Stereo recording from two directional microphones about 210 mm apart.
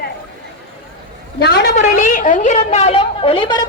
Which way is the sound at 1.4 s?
50° left (ahead or behind).